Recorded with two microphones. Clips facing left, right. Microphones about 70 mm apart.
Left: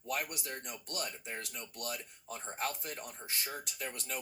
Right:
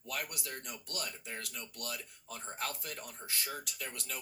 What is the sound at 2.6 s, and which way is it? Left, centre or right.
Speech, left.